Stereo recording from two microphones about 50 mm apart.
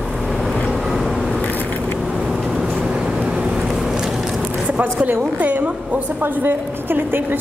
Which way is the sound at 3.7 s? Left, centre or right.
Centre.